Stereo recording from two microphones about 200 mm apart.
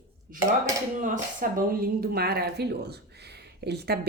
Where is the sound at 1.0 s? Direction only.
40° right (ahead or behind).